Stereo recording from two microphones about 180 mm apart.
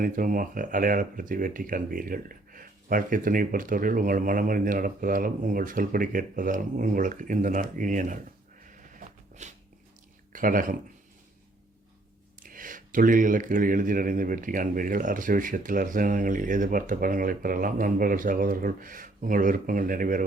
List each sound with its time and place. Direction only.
0.0 s speech: 50° right (ahead or behind)
8.6 s a sound: 45° right (ahead or behind)
10.3 s speech: 50° right (ahead or behind)
12.4 s speech: 50° right (ahead or behind)